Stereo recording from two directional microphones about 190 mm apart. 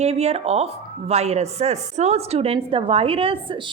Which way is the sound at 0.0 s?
35° right (ahead or behind).